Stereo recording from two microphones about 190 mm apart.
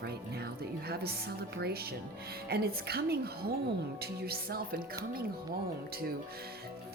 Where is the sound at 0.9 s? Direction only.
55° right (ahead or behind).